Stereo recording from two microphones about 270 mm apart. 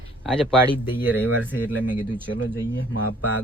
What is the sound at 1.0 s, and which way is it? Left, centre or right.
Speech, centre.